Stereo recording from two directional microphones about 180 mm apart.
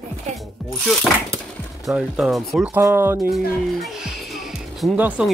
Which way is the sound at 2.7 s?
15° right (ahead or behind).